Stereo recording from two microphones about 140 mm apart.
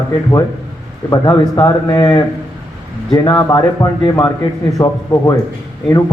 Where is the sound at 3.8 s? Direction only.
30° left (ahead or behind).